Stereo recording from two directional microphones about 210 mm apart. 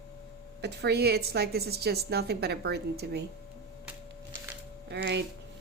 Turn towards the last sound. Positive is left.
turn(degrees=-55)  # may be behind; listen again after turning